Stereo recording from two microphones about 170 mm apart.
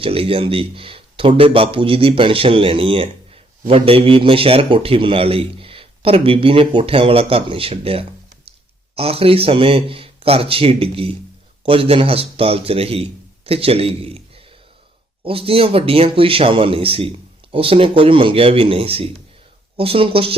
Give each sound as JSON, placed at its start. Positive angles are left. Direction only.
{"t": 0.0, "sound": "a man's voice", "side_deg": -35}
{"t": 15.2, "sound": "a man's voice", "side_deg": -35}